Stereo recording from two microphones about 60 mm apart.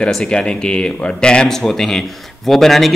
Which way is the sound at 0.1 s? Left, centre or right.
Centre.